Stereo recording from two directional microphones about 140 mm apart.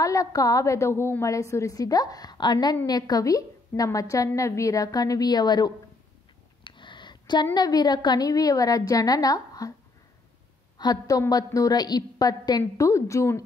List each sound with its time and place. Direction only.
0.0 s a woman's voice: 20° left (ahead or behind)
6.6 s a sound: 35° left (ahead or behind)
7.5 s a woman's voice: 30° left (ahead or behind)
10.8 s a woman's voice: 25° left (ahead or behind)